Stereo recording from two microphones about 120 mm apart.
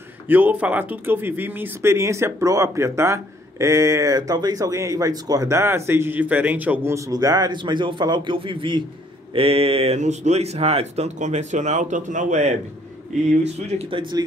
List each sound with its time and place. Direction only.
0.3 s speech: 15° right (ahead or behind); by 12.5 s 85° right
14.1 s speech: 30° right (ahead or behind)